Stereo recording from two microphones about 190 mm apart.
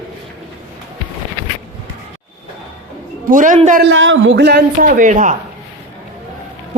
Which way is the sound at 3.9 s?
90° right.